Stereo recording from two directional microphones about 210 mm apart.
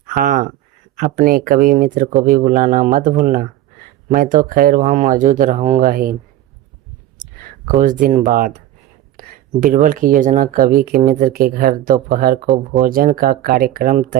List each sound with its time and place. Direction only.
0.1 s speech: 40° right (ahead or behind)
7.6 s speech: 40° right (ahead or behind)